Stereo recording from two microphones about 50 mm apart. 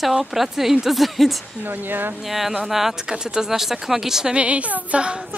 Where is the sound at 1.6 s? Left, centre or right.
Right.